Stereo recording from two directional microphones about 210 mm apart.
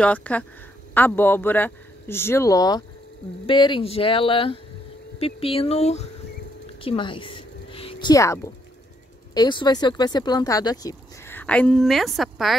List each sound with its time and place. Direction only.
0.0 s speech: 5° left (ahead or behind); by 6.0 s 30° left (ahead or behind)
6.8 s a sound: 25° left (ahead or behind)
9.3 s speech: 20° left (ahead or behind); by 12.5 s centre (ahead or behind)